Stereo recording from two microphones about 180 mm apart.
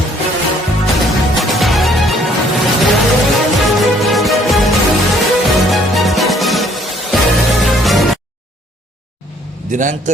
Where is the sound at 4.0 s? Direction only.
Centre (ahead or behind).